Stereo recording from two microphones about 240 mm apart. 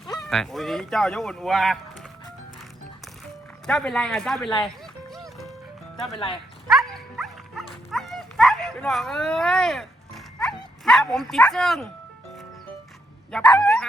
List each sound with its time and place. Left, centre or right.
0.0 s speech: centre
3.7 s speech: centre
5.1 s music: centre
6.1 s speech: left
6.7 s dog: centre
13.3 s speech: centre